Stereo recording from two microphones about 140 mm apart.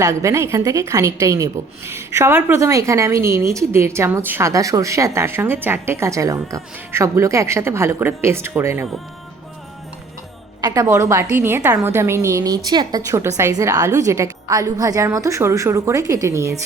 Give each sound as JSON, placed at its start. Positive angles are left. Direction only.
{"t": 0.0, "sound": "a woman's voice", "side_deg": -20}
{"t": 10.6, "sound": "a woman's voice", "side_deg": -25}